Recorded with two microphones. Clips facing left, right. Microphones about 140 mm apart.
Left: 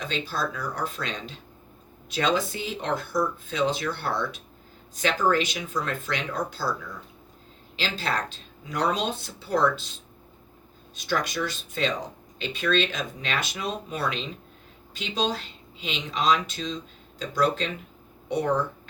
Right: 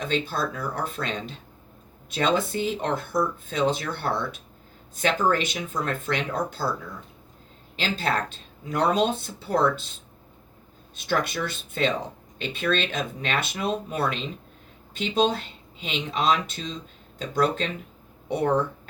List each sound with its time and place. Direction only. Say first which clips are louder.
0.1 s speech: right 3 dB; 50° right (ahead or behind)
7.8 s speech: right 3 dB; 55° right (ahead or behind)
10.9 s speech: right 1 dB; 55° right (ahead or behind)